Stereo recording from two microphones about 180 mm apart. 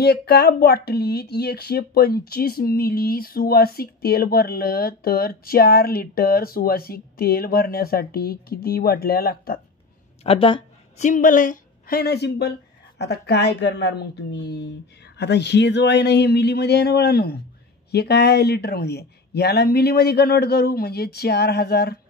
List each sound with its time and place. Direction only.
0.0 s speech: 65° left (ahead or behind)
10.2 s a woman's voice: 30° left (ahead or behind)
11.1 s speech: 50° left (ahead or behind)